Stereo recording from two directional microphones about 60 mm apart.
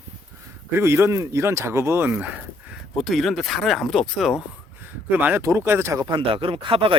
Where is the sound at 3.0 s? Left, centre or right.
Centre.